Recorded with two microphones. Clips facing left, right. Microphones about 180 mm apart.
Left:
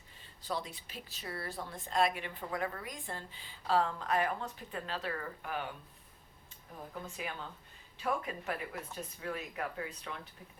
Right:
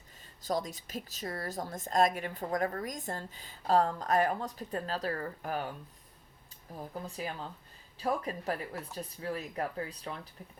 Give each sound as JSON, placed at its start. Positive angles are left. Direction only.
{"t": 0.4, "sound": "a woman's voice", "side_deg": -40}
{"t": 6.9, "sound": "a woman's voice", "side_deg": -35}